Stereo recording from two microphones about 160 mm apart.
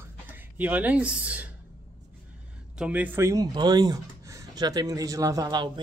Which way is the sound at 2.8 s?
10° right (ahead or behind).